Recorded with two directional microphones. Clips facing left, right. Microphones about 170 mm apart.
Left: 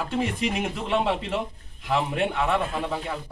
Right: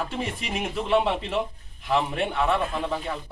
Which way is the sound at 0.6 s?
Centre (ahead or behind).